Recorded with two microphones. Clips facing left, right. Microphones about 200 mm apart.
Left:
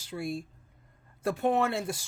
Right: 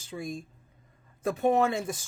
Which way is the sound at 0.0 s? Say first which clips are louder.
Left 2 dB; 15° right (ahead or behind).